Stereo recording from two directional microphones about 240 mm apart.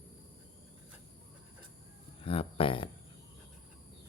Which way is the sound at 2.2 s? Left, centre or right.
Left.